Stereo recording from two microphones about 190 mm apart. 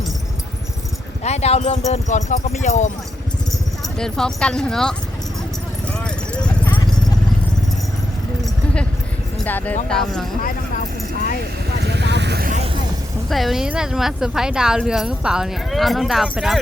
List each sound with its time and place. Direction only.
1.2 s speech: 35° left (ahead or behind)
3.8 s speech: 5° left (ahead or behind)
6.0 s clip-clop: 5° left (ahead or behind)
8.4 s a sound: 5° left (ahead or behind)
9.4 s speech: 10° left (ahead or behind)
11.7 s vehicle: 60° right (ahead or behind)
13.3 s speech: centre (ahead or behind)